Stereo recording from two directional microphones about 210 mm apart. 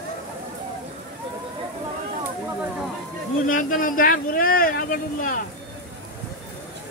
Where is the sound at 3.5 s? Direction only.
40° left (ahead or behind).